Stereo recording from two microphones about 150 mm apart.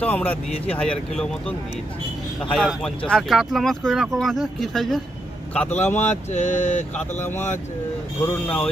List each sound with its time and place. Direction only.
0.0 s speech: 10° left (ahead or behind)
5.5 s speech: 10° left (ahead or behind)
6.1 s a sound: 50° left (ahead or behind)
6.9 s speech: 15° left (ahead or behind)